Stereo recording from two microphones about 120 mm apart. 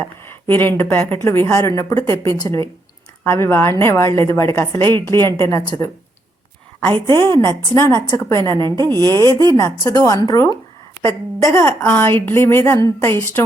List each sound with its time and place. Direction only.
0.3 s speech: 20° left (ahead or behind)
7.1 s speech: 20° left (ahead or behind)
8.7 s speech: 35° right (ahead or behind)
9.6 s speech: 30° left (ahead or behind)